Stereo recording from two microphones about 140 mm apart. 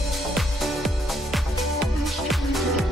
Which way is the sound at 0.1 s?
Centre (ahead or behind).